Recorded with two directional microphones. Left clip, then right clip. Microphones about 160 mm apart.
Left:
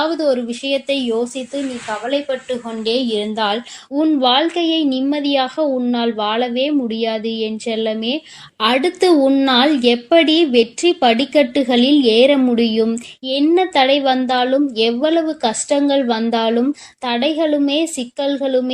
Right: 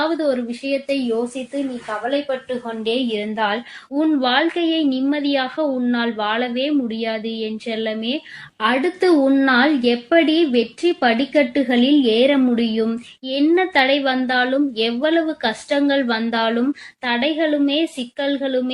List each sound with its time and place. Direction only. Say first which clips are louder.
0.2 s a woman's voice: left 3 dB; 40° left (ahead or behind)
2.0 s a woman's voice: left 2 dB; 35° left (ahead or behind)